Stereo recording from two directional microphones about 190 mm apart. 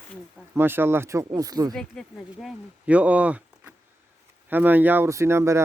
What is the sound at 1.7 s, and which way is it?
Speech, 5° left (ahead or behind).